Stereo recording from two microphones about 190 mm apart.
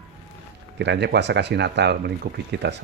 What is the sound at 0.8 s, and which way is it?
Speech, 65° right (ahead or behind).